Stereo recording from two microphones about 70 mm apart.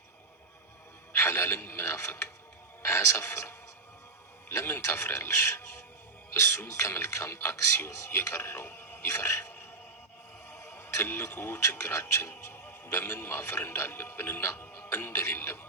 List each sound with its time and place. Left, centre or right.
1.1 s speech: left
10.5 s speech: left